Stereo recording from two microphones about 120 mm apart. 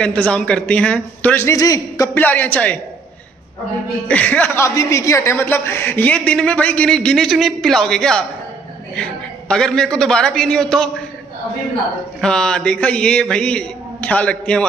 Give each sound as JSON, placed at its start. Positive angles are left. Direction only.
{"t": 0.0, "sound": "a man's voice", "side_deg": 10}
{"t": 1.4, "sound": "a man's voice", "side_deg": 25}
{"t": 2.1, "sound": "a man's voice", "side_deg": 15}
{"t": 4.1, "sound": "a man's voice", "side_deg": 10}
{"t": 4.6, "sound": "a man's voice", "side_deg": 25}
{"t": 12.2, "sound": "a man's voice", "side_deg": 5}